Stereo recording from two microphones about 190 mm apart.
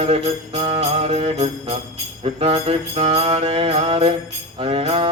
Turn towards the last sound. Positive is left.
turn(degrees=-30)  # may be behind; listen again after turning